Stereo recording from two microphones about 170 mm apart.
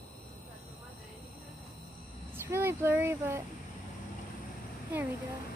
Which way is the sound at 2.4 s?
15° right (ahead or behind).